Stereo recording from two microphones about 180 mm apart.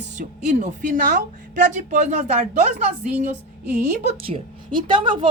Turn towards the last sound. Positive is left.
turn(degrees=-25)  # may be behind; listen again after turning